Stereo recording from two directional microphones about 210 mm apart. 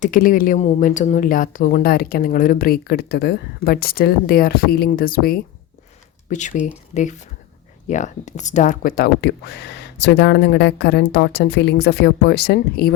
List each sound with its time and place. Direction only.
0.0 s speech: 40° left (ahead or behind)